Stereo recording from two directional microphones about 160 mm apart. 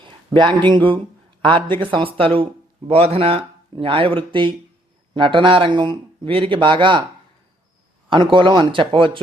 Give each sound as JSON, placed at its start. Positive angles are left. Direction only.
{"t": 0.0, "sound": "speech", "side_deg": -30}
{"t": 8.1, "sound": "speech", "side_deg": -30}